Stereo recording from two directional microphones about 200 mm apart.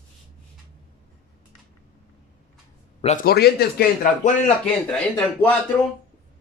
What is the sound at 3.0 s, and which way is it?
Speech, 45° left (ahead or behind).